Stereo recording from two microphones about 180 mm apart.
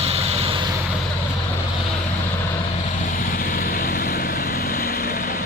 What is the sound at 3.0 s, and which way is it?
Vehicle, 50° left (ahead or behind).